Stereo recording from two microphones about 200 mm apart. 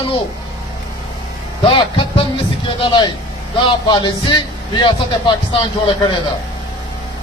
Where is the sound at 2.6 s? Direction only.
25° left (ahead or behind).